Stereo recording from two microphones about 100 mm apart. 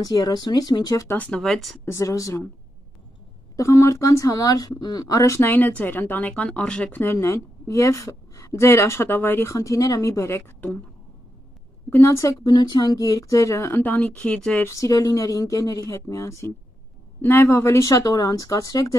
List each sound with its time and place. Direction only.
0.0 s speech: 40° left (ahead or behind)
1.0 s speech: 15° left (ahead or behind)
1.4 s speech: centre (ahead or behind)
1.9 s speech: 30° left (ahead or behind)
3.5 s speech: 30° left (ahead or behind)
5.5 s speech: 15° left (ahead or behind)
9.6 s speech: 35° left (ahead or behind); by 10.8 s 20° left (ahead or behind)
11.9 s speech: 30° left (ahead or behind)
12.4 s speech: 45° left (ahead or behind); by 14.7 s 15° left (ahead or behind)
14.7 s speech: 35° left (ahead or behind)